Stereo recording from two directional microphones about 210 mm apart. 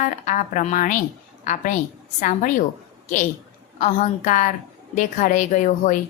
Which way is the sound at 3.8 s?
35° left (ahead or behind).